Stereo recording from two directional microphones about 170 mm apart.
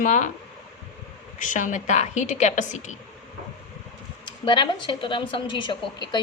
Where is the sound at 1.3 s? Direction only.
50° left (ahead or behind).